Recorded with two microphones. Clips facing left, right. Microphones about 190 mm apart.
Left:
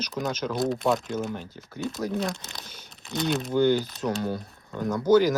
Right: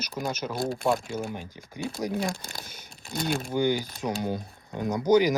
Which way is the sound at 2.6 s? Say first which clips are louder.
Even; 10° right (ahead or behind).